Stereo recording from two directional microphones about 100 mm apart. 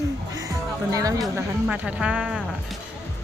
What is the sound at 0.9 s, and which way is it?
Speech, 35° right (ahead or behind).